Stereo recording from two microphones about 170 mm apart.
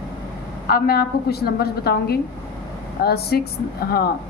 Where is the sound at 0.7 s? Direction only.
65° left (ahead or behind).